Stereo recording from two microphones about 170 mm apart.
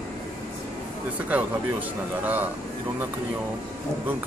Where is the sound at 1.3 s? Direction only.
10° right (ahead or behind).